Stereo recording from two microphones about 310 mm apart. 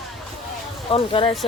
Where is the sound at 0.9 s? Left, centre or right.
Centre.